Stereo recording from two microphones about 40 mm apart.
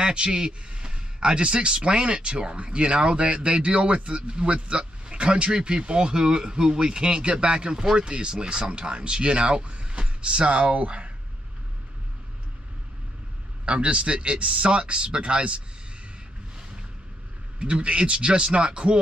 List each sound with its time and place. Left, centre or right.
0.0 s speech: right
13.7 s speech: right
17.6 s speech: right